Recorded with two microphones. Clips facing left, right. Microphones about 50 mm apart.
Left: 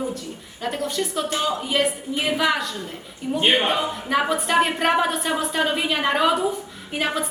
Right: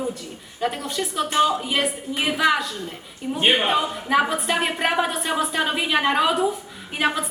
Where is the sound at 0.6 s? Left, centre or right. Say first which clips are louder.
Even; centre.